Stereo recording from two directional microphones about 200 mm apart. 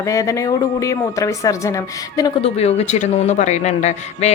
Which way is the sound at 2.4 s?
30° left (ahead or behind).